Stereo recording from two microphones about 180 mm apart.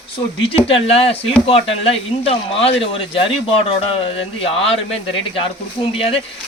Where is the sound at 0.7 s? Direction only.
30° left (ahead or behind).